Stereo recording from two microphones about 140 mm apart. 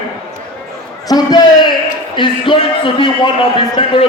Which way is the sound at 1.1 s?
30° left (ahead or behind).